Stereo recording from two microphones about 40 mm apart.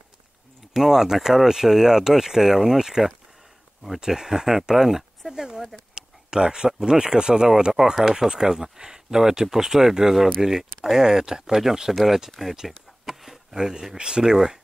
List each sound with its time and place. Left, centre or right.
0.7 s speech: centre
5.3 s speech: centre
12.5 s a sound: centre
13.9 s speech: right